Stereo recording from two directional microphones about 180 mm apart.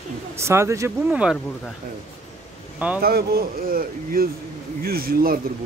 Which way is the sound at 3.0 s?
60° right (ahead or behind).